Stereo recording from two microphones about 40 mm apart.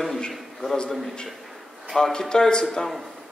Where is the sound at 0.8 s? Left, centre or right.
Centre.